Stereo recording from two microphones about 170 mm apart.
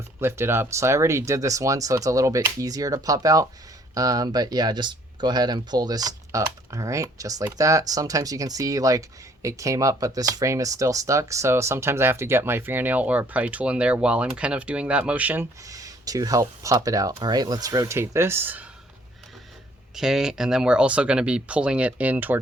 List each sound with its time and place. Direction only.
0.2 s speech: 15° right (ahead or behind)
15.7 s speech: 20° right (ahead or behind)
20.0 s speech: 5° right (ahead or behind)